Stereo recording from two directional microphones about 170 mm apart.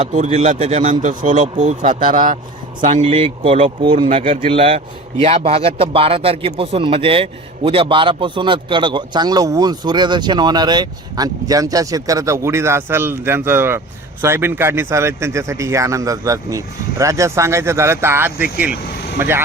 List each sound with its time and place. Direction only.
0.1 s speech: 45° right (ahead or behind)
3.0 s a man's voice: 30° right (ahead or behind); by 18.4 s 15° right (ahead or behind)
18.8 s speech: 70° left (ahead or behind)